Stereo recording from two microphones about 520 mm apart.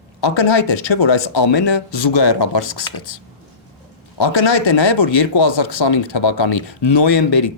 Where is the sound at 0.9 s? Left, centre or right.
Left.